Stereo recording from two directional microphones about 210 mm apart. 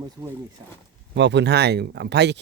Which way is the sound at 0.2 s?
15° right (ahead or behind).